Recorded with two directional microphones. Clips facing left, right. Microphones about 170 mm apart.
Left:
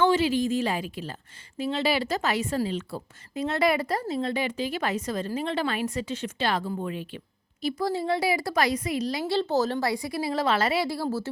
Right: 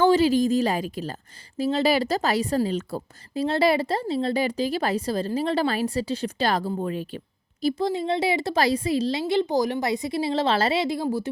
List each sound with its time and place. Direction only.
0.0 s a woman's voice: 35° right (ahead or behind)
7.8 s a woman's voice: 20° right (ahead or behind)